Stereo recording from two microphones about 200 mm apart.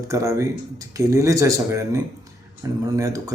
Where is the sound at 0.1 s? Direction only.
15° right (ahead or behind).